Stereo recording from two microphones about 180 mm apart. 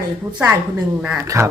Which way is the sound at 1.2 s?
15° right (ahead or behind).